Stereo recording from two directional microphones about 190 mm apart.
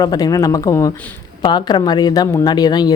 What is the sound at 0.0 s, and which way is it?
Speech, 20° left (ahead or behind).